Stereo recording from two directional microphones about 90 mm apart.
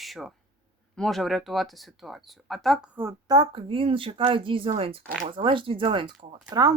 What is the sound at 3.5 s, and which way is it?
Speech, 80° right.